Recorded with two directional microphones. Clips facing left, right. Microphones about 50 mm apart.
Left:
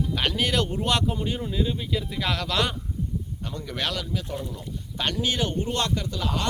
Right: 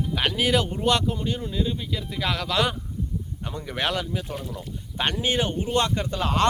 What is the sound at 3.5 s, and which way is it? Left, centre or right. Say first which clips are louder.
Speech: right 3 dB; centre.